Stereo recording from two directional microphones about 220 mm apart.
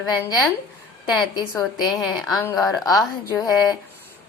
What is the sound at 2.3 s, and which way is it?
Speech, 15° left (ahead or behind).